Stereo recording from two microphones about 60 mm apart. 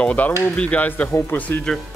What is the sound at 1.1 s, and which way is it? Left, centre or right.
Speech, left.